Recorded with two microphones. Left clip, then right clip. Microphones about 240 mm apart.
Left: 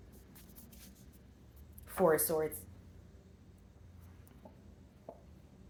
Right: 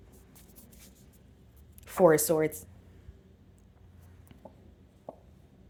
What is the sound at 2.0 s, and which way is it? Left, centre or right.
Speech, right.